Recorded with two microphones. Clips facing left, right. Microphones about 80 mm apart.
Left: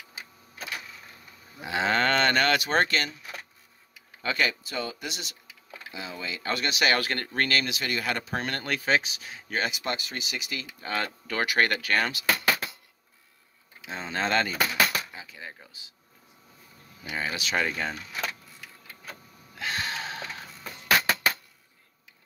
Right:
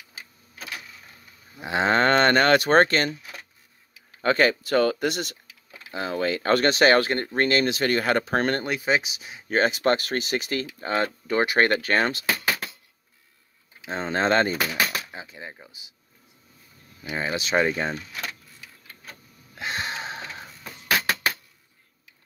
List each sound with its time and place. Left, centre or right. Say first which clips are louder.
1.6 s speech: right 4 dB; right
4.2 s speech: right 7 dB; right
4.6 s speech: right 12 dB; right
7.1 s speech: right 5 dB; right
8.6 s speech: right 2 dB; centre
9.5 s speech: right 9 dB; right
10.9 s speech: right 6 dB; right
13.8 s speech: right 6 dB; right; by 15.9 s centre
17.1 s speech: right 5 dB; right
19.6 s a sound: right 2 dB; right